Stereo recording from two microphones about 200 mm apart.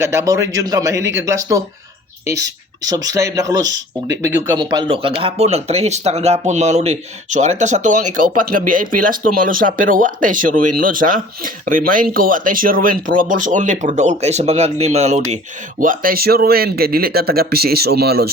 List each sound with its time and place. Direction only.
0.0 s speech: 15° right (ahead or behind)
2.8 s speech: 20° right (ahead or behind); by 18.3 s 50° right (ahead or behind)